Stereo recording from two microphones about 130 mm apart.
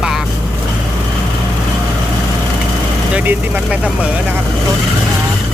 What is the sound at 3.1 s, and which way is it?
Speech, 10° right (ahead or behind).